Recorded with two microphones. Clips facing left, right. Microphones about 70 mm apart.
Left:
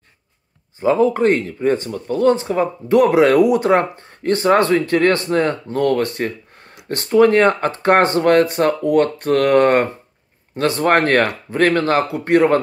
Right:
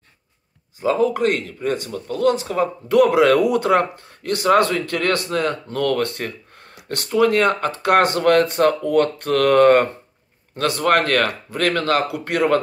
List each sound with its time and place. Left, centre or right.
0.7 s speech: left
7.1 s speech: left